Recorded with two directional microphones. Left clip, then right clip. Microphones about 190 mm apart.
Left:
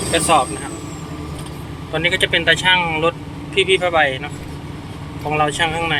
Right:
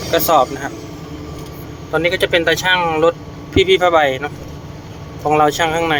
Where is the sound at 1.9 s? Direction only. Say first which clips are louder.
Right 2 dB; 10° right (ahead or behind).